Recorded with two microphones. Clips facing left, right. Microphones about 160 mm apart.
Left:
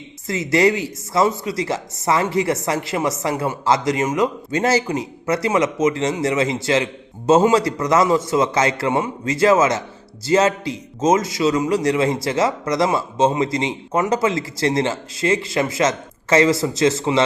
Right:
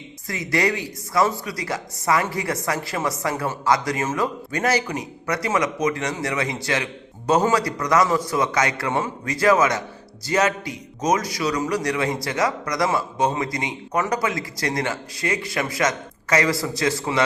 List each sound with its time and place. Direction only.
0.3 s speech: 25° left (ahead or behind)